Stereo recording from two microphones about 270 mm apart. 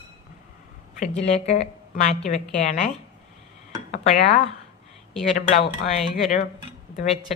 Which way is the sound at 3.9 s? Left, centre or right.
Left.